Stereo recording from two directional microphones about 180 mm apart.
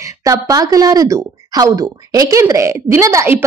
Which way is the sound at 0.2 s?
20° right (ahead or behind).